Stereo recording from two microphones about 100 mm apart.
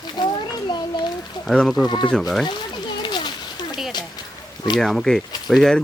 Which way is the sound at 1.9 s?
45° left (ahead or behind).